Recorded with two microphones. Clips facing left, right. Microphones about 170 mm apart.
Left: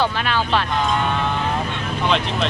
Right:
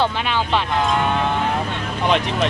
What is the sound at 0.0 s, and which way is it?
Speech, 20° right (ahead or behind).